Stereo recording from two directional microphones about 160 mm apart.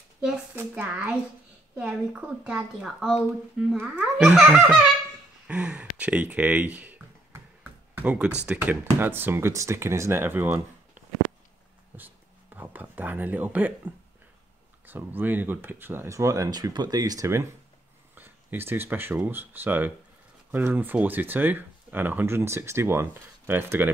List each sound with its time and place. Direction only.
0.6 s a woman's voice: 10° right (ahead or behind)
12.5 s speech: 10° right (ahead or behind)
14.9 s speech: 10° right (ahead or behind)